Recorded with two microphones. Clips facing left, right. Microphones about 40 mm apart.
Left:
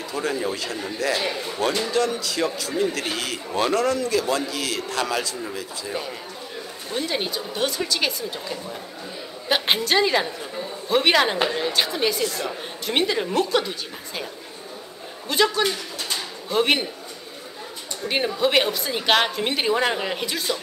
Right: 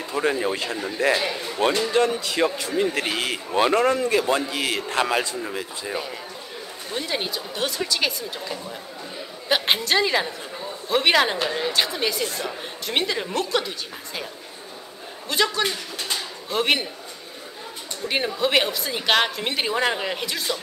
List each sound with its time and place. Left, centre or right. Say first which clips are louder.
0.0 s a man's voice: right 2 dB; right
6.9 s a woman's voice: left 1 dB; centre
15.2 s a woman's voice: left 2 dB; centre
18.0 s a woman's voice: left 1 dB; centre